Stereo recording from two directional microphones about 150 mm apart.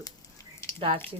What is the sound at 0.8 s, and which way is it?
Speech, 35° right (ahead or behind).